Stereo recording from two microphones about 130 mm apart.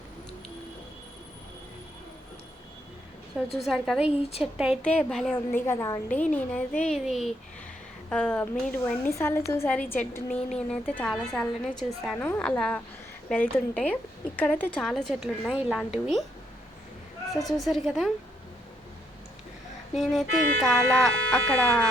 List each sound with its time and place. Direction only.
3.5 s a woman's voice: centre (ahead or behind)
4.2 s a woman's voice: 50° left (ahead or behind)
4.5 s a woman's voice: 5° right (ahead or behind)
4.8 s speech: 10° left (ahead or behind)
5.5 s a woman's voice: 20° left (ahead or behind)
6.1 s speech: 10° left (ahead or behind)
8.8 s a woman's voice: 20° left (ahead or behind); by 15.9 s 5° right (ahead or behind)
17.6 s a woman's voice: centre (ahead or behind)
19.9 s a woman's voice: centre (ahead or behind)
20.2 s speech: 70° left (ahead or behind)
20.6 s speech: 5° left (ahead or behind)